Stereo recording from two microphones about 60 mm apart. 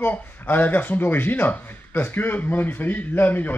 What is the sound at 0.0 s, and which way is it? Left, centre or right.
Speech, left.